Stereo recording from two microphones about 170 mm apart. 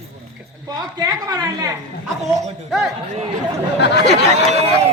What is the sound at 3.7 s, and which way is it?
Speech, 90° left.